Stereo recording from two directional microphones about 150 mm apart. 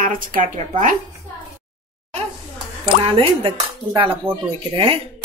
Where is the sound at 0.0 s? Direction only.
65° right (ahead or behind).